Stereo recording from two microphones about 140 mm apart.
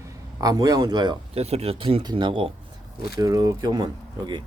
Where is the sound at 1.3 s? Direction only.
50° right (ahead or behind).